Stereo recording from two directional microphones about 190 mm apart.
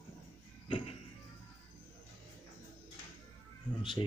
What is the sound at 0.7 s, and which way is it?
Music, 25° left (ahead or behind).